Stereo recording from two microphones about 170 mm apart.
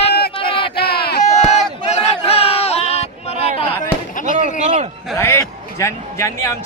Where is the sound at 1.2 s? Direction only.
40° left (ahead or behind).